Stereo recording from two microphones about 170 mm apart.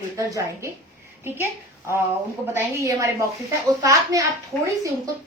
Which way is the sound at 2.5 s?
20° right (ahead or behind).